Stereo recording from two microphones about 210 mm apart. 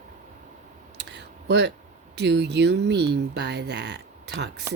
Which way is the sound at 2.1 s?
55° right (ahead or behind).